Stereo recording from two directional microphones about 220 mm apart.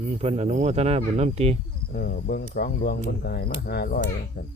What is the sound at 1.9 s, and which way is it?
Speech, 45° left (ahead or behind).